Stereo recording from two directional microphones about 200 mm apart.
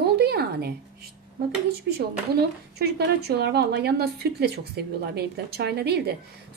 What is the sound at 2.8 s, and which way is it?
Speech, 55° right (ahead or behind).